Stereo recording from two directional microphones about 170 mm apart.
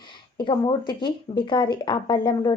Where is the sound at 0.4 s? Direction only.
25° left (ahead or behind).